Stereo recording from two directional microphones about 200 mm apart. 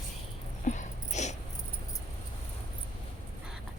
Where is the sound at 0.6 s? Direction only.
35° left (ahead or behind).